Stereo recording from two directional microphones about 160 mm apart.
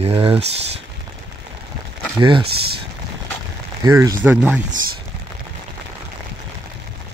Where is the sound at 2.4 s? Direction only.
80° right.